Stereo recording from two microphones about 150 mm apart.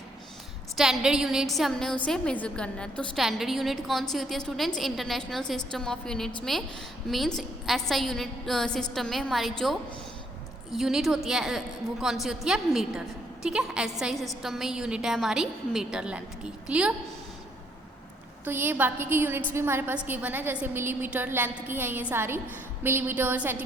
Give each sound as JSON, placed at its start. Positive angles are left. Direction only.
{"t": 0.8, "sound": "a woman's voice", "side_deg": -5}
{"t": 18.4, "sound": "a woman's voice", "side_deg": -15}